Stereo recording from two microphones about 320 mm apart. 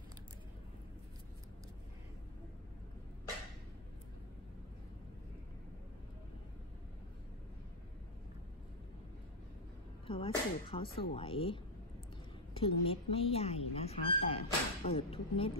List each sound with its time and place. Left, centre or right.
10.0 s speech: centre